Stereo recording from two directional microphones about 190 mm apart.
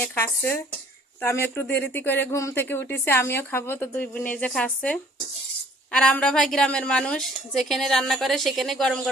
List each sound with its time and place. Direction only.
0.0 s a woman's voice: 10° left (ahead or behind)
1.6 s speech: 60° left (ahead or behind)
1.9 s a woman's voice: 10° left (ahead or behind)